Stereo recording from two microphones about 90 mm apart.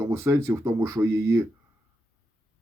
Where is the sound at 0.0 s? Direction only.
30° right (ahead or behind).